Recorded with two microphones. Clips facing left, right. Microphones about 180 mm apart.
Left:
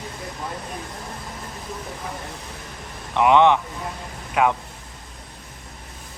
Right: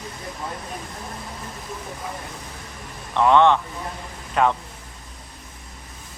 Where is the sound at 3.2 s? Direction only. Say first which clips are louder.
Even; 15° left (ahead or behind).